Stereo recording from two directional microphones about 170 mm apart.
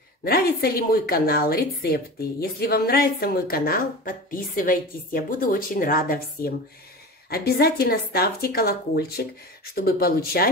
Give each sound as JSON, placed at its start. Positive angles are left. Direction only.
{"t": 0.2, "sound": "a woman's voice", "side_deg": 65}